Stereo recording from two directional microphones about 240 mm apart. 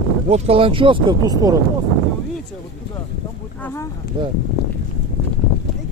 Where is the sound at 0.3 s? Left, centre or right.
Right.